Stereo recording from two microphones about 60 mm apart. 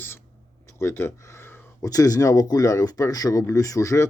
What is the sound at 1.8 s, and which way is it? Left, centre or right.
Speech, left.